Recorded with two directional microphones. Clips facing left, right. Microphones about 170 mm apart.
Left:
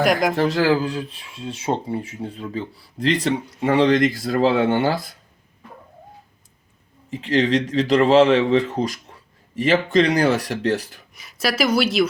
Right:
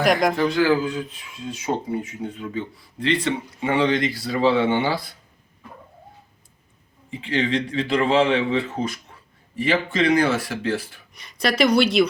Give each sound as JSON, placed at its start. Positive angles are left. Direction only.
{"t": 0.0, "sound": "speech", "side_deg": 0}
{"t": 0.3, "sound": "speech", "side_deg": 40}
{"t": 7.1, "sound": "speech", "side_deg": 40}
{"t": 11.1, "sound": "speech", "side_deg": 5}